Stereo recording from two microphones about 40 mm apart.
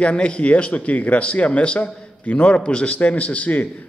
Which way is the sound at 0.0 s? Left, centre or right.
Left.